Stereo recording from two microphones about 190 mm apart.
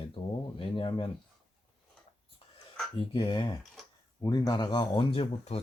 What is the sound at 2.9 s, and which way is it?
Speech, 25° left (ahead or behind).